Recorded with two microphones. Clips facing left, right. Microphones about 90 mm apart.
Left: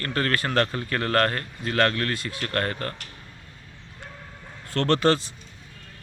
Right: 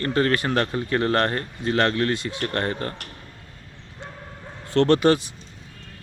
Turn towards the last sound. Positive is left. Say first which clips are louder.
# right 3 dB
turn(degrees=-15)  # may be behind; listen again after turning